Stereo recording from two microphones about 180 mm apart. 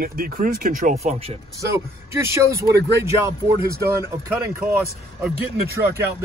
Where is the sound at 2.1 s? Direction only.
15° right (ahead or behind).